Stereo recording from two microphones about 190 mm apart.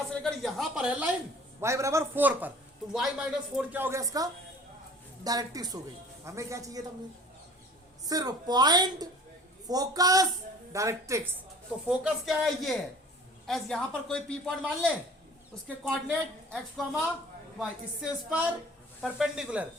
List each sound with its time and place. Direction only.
0.1 s a woman's voice: 5° left (ahead or behind); by 6.8 s 15° right (ahead or behind)
8.0 s a woman's voice: 20° right (ahead or behind)
11.9 s speech: 5° right (ahead or behind)